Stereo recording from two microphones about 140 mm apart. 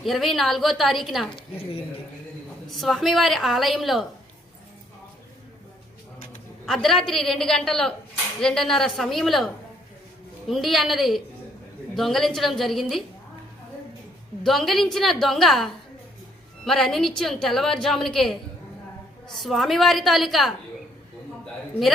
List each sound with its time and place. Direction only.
0.0 s a woman's voice: centre (ahead or behind)
1.3 s a woman's voice: 40° left (ahead or behind)
2.6 s a woman's voice: centre (ahead or behind)
6.7 s a woman's voice: centre (ahead or behind)
10.5 s a woman's voice: centre (ahead or behind)
14.4 s a woman's voice: centre (ahead or behind)